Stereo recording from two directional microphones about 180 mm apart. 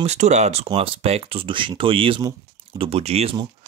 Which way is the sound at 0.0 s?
40° right (ahead or behind).